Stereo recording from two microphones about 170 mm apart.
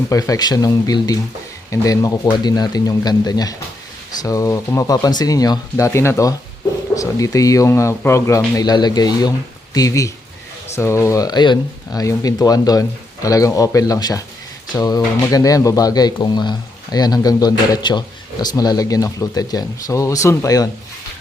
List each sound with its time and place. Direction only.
0.1 s a man's voice: 20° left (ahead or behind)